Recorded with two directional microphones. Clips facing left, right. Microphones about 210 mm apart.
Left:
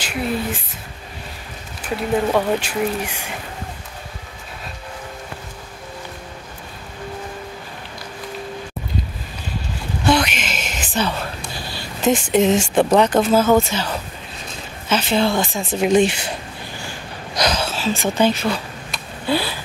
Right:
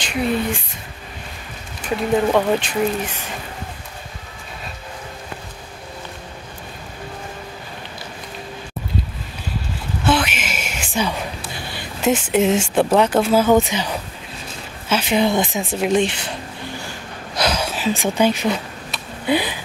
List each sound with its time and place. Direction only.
0.0 s speech: 5° left (ahead or behind)
2.3 s speech: 10° left (ahead or behind)
10.0 s a sound: 5° right (ahead or behind)
12.0 s speech: 5° right (ahead or behind)
15.8 s speech: 5° left (ahead or behind)
17.4 s speech: 10° right (ahead or behind)
19.2 s a sound: 15° right (ahead or behind)